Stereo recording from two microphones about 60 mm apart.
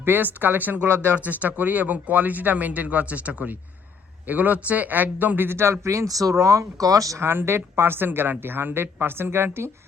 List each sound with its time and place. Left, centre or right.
0.0 s speech: right
6.4 s speech: right
7.2 s speech: right